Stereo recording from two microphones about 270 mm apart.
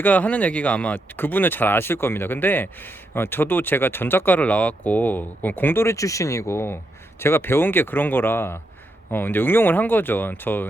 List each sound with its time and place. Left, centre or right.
0.0 s speech: centre